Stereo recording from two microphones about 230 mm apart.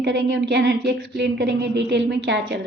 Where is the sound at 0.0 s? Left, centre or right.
Right.